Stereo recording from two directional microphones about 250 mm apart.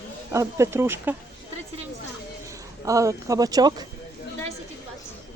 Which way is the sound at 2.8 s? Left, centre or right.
Centre.